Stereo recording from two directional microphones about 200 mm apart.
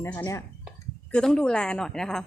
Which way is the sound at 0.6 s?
5° left (ahead or behind).